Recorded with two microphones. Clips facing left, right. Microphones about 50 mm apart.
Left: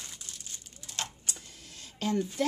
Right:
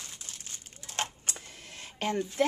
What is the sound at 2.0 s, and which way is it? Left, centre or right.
Speech, right.